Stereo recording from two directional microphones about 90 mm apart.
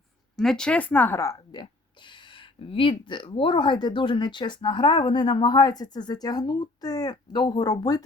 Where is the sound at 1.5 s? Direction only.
60° left (ahead or behind).